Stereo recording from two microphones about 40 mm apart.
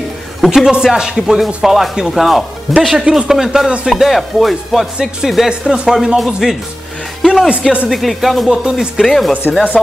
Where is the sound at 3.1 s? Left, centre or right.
Centre.